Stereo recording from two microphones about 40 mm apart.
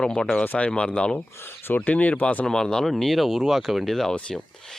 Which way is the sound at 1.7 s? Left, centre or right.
Left.